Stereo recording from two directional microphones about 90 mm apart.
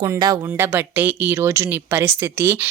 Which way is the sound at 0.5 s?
20° right (ahead or behind).